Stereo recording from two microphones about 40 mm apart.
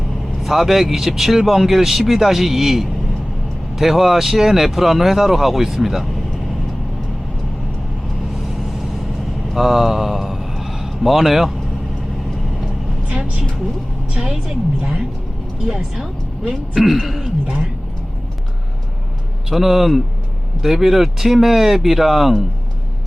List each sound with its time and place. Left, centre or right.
0.4 s speech: centre
8.5 s vehicle: centre
9.5 s a sound: centre
13.1 s vehicle: right
14.3 s a woman's voice: centre
16.4 s speech: centre
19.5 s speech: centre